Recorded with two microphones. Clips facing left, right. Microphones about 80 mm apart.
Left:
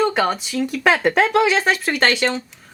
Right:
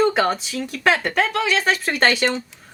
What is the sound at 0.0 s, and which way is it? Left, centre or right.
Speech, centre.